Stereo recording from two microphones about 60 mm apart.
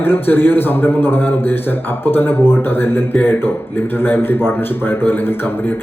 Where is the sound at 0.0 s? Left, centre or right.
Left.